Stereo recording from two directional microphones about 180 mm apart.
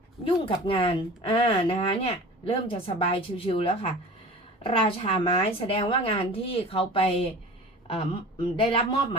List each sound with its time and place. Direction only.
0.3 s a woman's voice: 30° left (ahead or behind)